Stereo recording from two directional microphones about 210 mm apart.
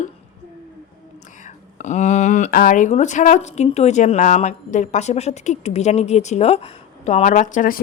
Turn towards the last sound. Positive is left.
turn(degrees=40)  # may be behind; listen again after turning